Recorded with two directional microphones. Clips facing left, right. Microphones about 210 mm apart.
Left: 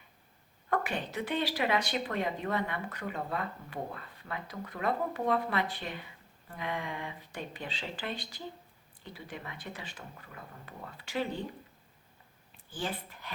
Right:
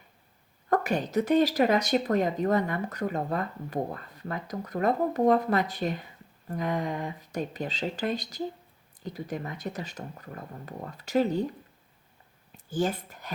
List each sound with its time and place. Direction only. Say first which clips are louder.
0.7 s speech: right 7 dB; 40° right (ahead or behind)
12.5 s speech: right 9 dB; 45° right (ahead or behind)